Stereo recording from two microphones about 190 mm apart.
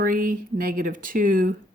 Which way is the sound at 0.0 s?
50° right (ahead or behind).